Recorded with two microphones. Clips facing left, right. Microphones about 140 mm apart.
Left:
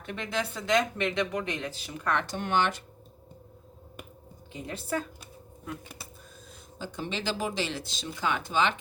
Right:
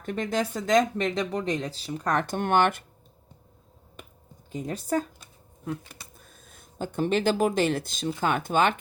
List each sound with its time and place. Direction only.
0.0 s speech: 45° right (ahead or behind)
4.5 s speech: 40° right (ahead or behind)
6.7 s speech: 55° right (ahead or behind)